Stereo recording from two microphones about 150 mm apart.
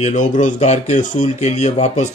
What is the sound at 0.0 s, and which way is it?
Speech, 55° left (ahead or behind).